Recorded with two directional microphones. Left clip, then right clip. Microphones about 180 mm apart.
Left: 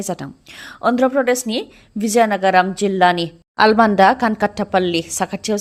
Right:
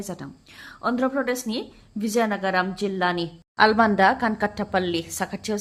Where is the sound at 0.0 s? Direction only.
45° left (ahead or behind).